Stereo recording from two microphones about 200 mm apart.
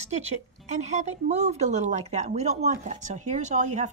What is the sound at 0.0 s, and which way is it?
A woman's voice, 35° right (ahead or behind).